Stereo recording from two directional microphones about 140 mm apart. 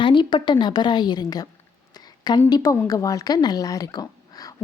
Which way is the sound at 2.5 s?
25° left (ahead or behind).